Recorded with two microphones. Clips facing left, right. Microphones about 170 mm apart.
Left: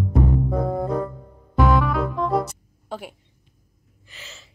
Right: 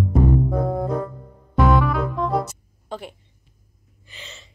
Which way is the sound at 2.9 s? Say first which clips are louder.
Even; 5° left (ahead or behind).